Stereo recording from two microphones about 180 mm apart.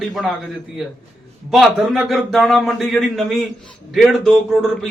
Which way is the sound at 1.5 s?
Centre (ahead or behind).